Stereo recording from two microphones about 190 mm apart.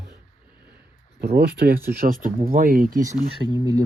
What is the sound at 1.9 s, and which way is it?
Speech, 50° right (ahead or behind).